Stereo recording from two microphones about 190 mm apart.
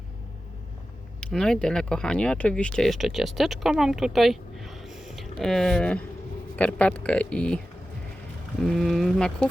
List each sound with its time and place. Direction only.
1.2 s speech: 5° left (ahead or behind)